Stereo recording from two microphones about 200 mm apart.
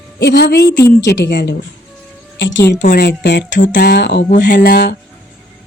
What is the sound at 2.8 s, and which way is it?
Speech, 55° left (ahead or behind).